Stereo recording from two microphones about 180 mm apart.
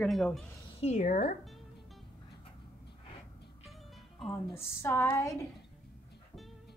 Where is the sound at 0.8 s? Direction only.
40° left (ahead or behind).